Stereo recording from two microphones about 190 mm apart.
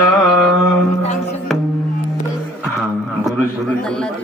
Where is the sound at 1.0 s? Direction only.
35° left (ahead or behind).